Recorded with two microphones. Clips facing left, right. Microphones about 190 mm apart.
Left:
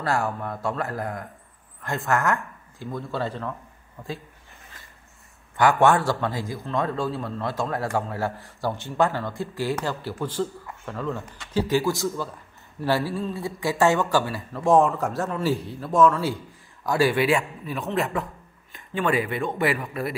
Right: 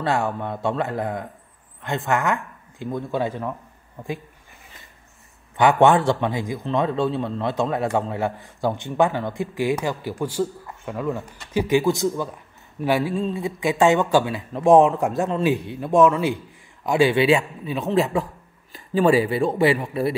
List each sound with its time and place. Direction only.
0.0 s a man's voice: 20° right (ahead or behind)
5.6 s a man's voice: 20° right (ahead or behind)
15.5 s speech: 65° right (ahead or behind)
15.8 s a man's voice: 20° right (ahead or behind)
17.7 s speech: centre (ahead or behind)
18.9 s a man's voice: 30° right (ahead or behind)